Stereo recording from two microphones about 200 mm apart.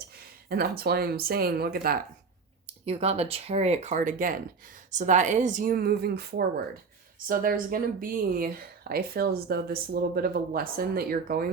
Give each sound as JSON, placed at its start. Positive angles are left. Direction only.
{"t": 0.4, "sound": "speech", "side_deg": -50}
{"t": 2.8, "sound": "speech", "side_deg": -30}